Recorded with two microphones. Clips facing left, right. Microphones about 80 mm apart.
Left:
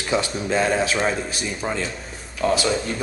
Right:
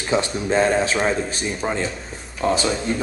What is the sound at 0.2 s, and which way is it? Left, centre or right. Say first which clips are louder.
Speech: right 3 dB; right.